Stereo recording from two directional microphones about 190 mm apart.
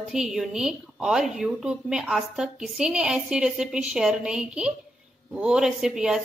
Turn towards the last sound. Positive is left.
turn(degrees=-5)  # may be behind; listen again after turning